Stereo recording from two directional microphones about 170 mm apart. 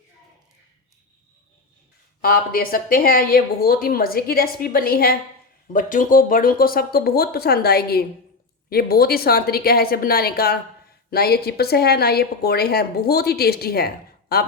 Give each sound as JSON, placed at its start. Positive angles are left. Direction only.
{"t": 2.2, "sound": "a woman's voice", "side_deg": 60}